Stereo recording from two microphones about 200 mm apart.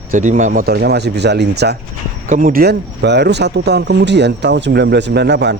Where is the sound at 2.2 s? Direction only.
40° right (ahead or behind).